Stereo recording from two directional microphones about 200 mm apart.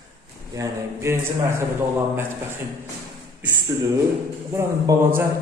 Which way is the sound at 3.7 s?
20° right (ahead or behind).